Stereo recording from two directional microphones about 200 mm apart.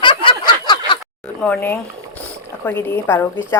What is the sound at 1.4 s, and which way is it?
A woman's voice, 10° left (ahead or behind).